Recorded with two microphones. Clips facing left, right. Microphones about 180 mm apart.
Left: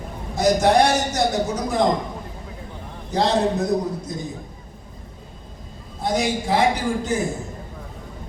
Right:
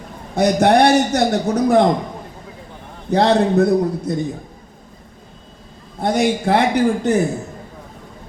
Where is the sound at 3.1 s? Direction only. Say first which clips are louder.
Right 5 dB; 60° right (ahead or behind).